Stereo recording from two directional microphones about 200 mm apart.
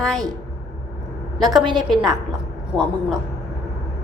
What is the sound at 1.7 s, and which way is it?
Speech, centre (ahead or behind).